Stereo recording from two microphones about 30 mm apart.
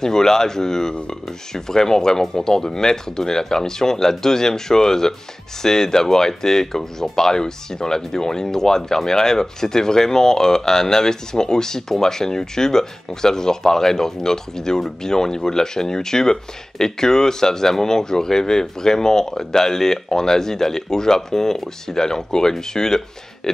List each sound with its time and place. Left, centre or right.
0.0 s speech: centre